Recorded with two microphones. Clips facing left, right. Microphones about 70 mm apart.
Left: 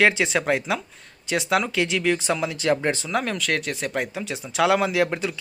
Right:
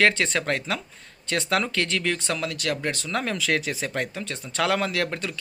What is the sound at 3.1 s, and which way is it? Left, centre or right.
Speech, centre.